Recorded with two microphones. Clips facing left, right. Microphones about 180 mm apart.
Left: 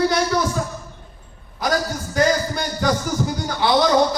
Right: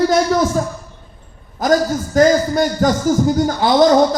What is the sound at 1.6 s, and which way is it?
A man's voice, 45° right (ahead or behind).